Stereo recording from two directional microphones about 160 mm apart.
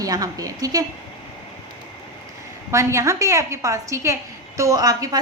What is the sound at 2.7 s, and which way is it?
A woman's voice, 15° right (ahead or behind).